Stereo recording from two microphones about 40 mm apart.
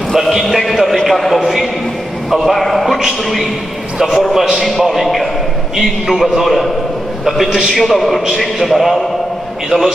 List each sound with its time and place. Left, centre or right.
0.1 s a man's voice: centre
4.0 s a man's voice: centre
7.4 s a man's voice: centre
7.7 s a man's voice: centre
9.7 s a man's voice: centre